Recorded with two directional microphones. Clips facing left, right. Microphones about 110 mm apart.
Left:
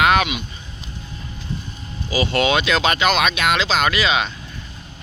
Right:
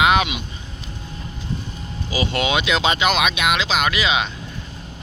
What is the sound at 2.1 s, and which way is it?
Speech, 15° right (ahead or behind).